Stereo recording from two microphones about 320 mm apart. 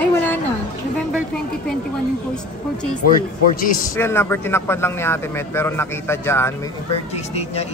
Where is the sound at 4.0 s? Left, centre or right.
Centre.